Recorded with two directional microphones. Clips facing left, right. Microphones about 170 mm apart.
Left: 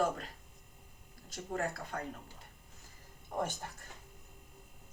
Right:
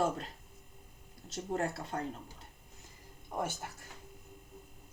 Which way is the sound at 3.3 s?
10° right (ahead or behind).